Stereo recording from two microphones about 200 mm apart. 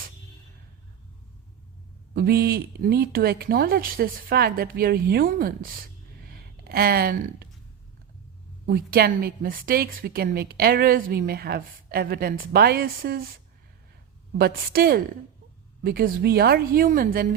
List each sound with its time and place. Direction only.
2.1 s a woman's voice: 50° right (ahead or behind)
6.3 s a sound: 50° right (ahead or behind)
8.6 s a woman's voice: 50° right (ahead or behind)
14.3 s a woman's voice: 50° right (ahead or behind)